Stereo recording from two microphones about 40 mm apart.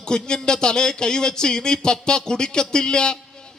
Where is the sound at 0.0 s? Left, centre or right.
Centre.